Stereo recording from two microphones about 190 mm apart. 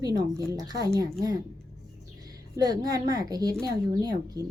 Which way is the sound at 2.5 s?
20° right (ahead or behind).